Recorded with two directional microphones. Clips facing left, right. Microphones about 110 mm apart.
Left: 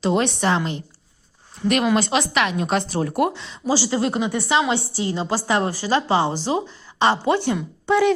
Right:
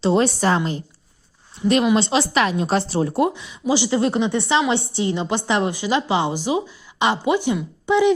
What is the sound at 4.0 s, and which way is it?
A woman's voice, 25° right (ahead or behind).